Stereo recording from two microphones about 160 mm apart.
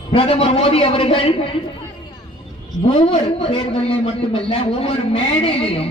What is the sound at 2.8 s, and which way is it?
A woman's voice, 35° left (ahead or behind).